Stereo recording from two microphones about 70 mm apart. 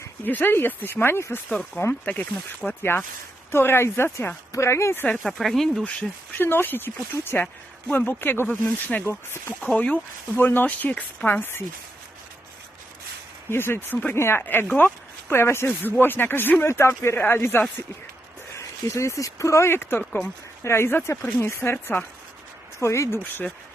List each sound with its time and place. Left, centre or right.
0.3 s speech: left
1.5 s speech: left
3.5 s speech: left
5.2 s speech: centre
5.8 s speech: centre
6.3 s speech: left
13.5 s speech: left
18.5 s speech: left
22.8 s speech: left